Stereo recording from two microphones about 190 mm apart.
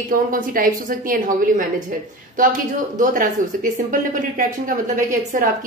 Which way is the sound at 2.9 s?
45° right (ahead or behind).